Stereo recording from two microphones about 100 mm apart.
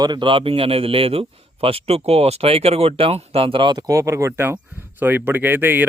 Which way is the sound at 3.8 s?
35° right (ahead or behind).